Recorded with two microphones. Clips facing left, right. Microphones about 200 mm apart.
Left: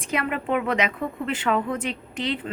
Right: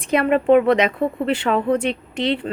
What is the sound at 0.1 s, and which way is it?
Speech, 35° right (ahead or behind).